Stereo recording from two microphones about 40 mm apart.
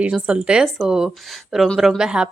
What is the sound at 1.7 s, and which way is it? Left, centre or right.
Speech, centre.